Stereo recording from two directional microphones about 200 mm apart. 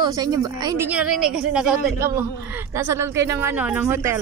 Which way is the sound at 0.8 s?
5° right (ahead or behind).